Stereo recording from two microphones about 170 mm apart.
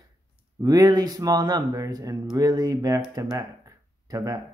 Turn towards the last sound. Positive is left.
turn(degrees=-20)  # may be behind; listen again after turning